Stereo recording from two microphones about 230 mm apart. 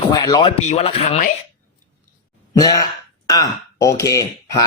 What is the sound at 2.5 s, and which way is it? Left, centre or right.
Speech, centre.